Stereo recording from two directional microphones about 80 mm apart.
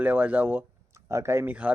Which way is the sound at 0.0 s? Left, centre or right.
Right.